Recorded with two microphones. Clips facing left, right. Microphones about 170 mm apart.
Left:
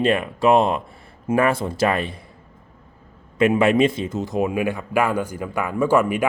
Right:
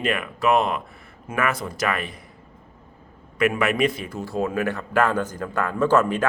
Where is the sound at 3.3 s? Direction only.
25° left (ahead or behind); by 6.2 s 10° left (ahead or behind).